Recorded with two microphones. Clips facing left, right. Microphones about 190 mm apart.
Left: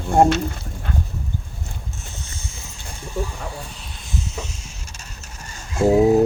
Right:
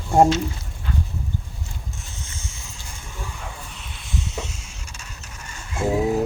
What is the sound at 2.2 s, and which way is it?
Vehicle, 35° left (ahead or behind).